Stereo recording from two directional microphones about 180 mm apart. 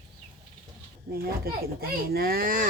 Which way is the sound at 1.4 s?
60° right (ahead or behind).